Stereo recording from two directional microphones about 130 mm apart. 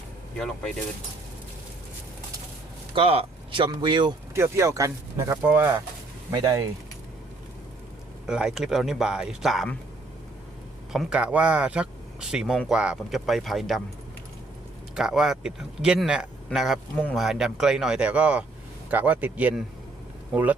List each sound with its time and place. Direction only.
0.3 s speech: 5° left (ahead or behind)
2.9 s speech: 45° right (ahead or behind)
4.4 s a man's voice: 20° right (ahead or behind)
6.3 s speech: 30° right (ahead or behind)
8.3 s speech: 5° right (ahead or behind)
10.9 s speech: 10° right (ahead or behind)
14.9 s a man's voice: 5° right (ahead or behind)